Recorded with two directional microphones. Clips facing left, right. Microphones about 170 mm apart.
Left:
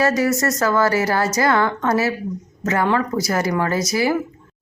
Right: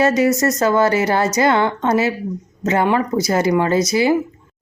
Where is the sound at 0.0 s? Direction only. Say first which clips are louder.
Right 3 dB; 20° right (ahead or behind).